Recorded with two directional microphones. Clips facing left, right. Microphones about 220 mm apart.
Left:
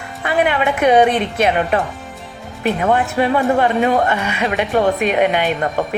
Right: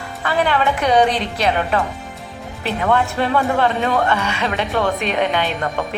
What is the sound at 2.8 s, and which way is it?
Speech, 15° left (ahead or behind).